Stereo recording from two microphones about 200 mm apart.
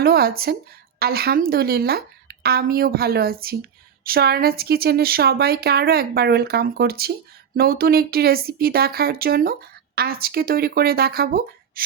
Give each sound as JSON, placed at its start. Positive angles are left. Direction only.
{"t": 0.0, "sound": "speech", "side_deg": -50}